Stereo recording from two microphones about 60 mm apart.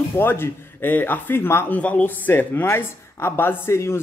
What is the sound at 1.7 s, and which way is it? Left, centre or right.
Speech, left.